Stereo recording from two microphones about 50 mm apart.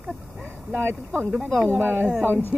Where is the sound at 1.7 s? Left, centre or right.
Right.